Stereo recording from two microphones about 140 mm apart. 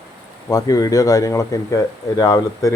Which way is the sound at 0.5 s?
25° left (ahead or behind).